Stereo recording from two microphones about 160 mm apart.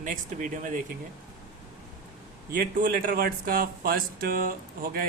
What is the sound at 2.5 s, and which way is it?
A man's voice, 60° right (ahead or behind).